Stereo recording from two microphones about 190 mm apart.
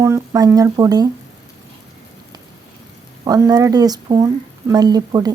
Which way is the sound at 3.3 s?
20° right (ahead or behind).